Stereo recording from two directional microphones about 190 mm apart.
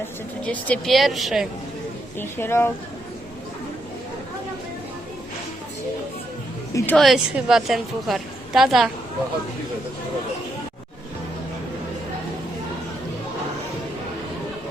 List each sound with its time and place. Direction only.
0.4 s a woman's voice: 5° left (ahead or behind)
2.1 s speech: 10° left (ahead or behind)
6.7 s a woman's voice: 5° left (ahead or behind)